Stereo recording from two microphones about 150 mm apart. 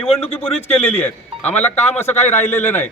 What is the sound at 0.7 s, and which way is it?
A man's voice, 15° left (ahead or behind).